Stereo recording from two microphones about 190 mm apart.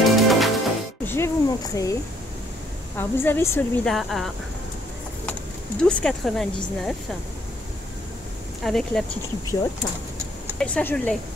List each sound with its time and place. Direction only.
0.0 s music: centre (ahead or behind)
1.0 s a sound: 15° left (ahead or behind)
3.0 s a woman's voice: 10° left (ahead or behind)
3.9 s speech: centre (ahead or behind)
5.8 s speech: 5° left (ahead or behind)
8.6 s speech: centre (ahead or behind)
10.6 s speech: 10° left (ahead or behind)